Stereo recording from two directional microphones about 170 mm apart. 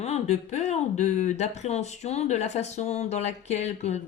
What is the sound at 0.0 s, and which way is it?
Speech, 40° left (ahead or behind).